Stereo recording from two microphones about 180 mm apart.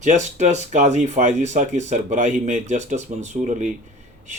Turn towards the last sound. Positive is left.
turn(degrees=-45)  # may be behind; listen again after turning